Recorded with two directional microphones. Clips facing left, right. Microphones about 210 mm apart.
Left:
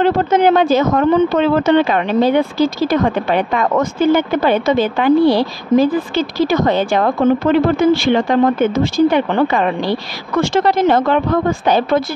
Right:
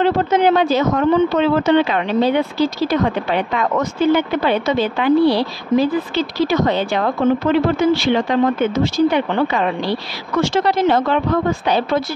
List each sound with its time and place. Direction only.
0.0 s speech: 50° left (ahead or behind)